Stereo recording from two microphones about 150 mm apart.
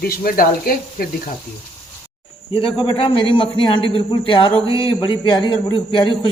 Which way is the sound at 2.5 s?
35° left (ahead or behind).